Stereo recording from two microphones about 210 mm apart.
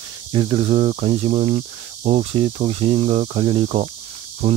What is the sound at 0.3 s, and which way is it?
Speech, 25° right (ahead or behind).